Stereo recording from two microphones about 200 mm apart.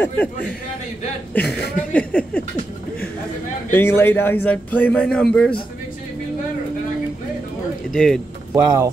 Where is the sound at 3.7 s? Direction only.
10° left (ahead or behind).